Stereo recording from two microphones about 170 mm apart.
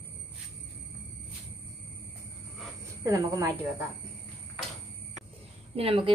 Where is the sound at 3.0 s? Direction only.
20° right (ahead or behind).